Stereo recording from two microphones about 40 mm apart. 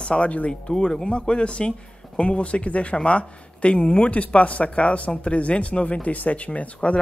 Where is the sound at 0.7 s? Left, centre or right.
Centre.